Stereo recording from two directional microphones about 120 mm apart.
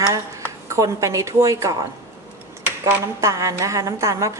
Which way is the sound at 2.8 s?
25° right (ahead or behind).